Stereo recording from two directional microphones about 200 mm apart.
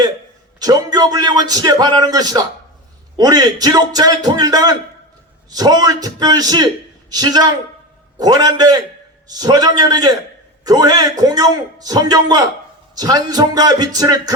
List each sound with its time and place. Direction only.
0.6 s a man's voice: 20° right (ahead or behind)